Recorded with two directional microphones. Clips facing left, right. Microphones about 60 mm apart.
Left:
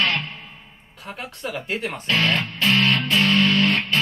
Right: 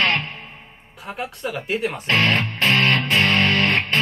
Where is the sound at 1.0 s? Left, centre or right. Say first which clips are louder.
Right 3 dB; centre.